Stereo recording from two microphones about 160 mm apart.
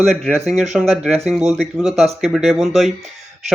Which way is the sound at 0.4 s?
45° right (ahead or behind).